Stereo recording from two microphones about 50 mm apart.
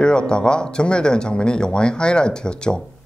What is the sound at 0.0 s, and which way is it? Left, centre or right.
Speech, centre.